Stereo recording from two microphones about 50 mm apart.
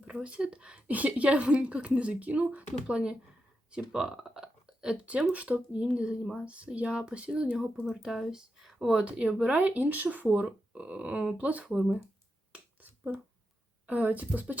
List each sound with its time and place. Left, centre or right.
0.1 s a woman's voice: centre
5.3 s a woman's voice: right
7.9 s speech: centre
8.9 s a woman's voice: right
13.8 s speech: right